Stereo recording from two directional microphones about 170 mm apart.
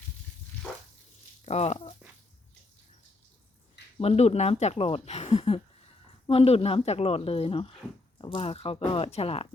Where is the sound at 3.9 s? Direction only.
40° left (ahead or behind).